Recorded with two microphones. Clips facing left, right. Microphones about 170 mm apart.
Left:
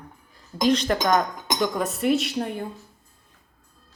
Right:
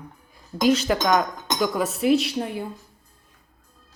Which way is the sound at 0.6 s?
5° right (ahead or behind).